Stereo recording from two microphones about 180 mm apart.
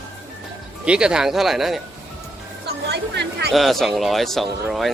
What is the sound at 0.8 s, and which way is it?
Speech, 5° right (ahead or behind).